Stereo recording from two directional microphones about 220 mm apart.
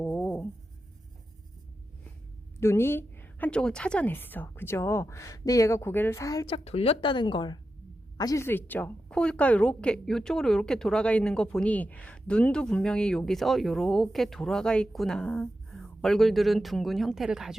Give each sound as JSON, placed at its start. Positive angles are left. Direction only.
{"t": 0.0, "sound": "a sound", "side_deg": 5}
{"t": 2.6, "sound": "a woman's voice", "side_deg": 10}
{"t": 6.7, "sound": "a woman's voice", "side_deg": 25}